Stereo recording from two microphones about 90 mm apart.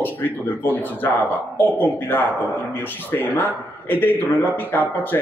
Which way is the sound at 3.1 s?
20° left (ahead or behind).